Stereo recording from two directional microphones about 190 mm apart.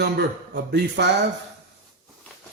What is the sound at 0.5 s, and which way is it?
Speech, 60° right (ahead or behind).